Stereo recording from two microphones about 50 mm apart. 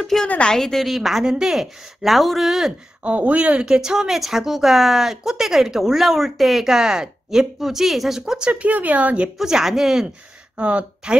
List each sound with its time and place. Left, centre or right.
0.0 s a woman's voice: centre
3.0 s speech: right
3.6 s speech: centre
8.5 s a woman's voice: right
9.4 s speech: centre
10.6 s speech: right